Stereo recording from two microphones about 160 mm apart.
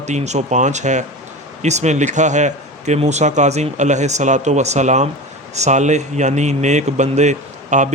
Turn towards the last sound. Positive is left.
turn(degrees=-50)  # may be behind; listen again after turning